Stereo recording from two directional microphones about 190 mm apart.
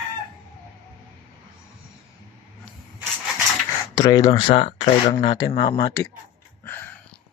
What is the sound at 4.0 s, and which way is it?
Speech, 20° left (ahead or behind).